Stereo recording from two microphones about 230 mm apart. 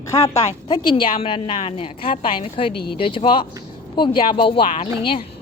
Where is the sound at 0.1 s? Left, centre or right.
Left.